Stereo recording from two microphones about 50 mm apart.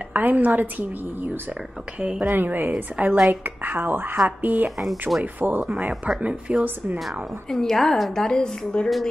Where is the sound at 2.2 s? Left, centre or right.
Right.